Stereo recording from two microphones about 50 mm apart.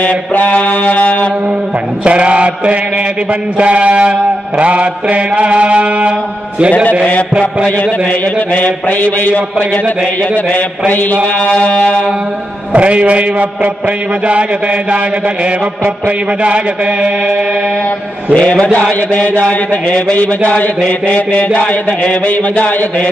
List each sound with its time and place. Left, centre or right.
0.0 s mantra: left
2.0 s mantra: right
8.5 s mantra: left
11.4 s a sound: left
12.7 s mantra: right
16.4 s mantra: right
18.3 s a sound: left
22.2 s mantra: left